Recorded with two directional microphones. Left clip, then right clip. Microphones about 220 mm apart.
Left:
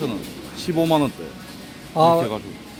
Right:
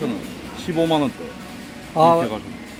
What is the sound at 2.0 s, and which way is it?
Speech, 5° left (ahead or behind).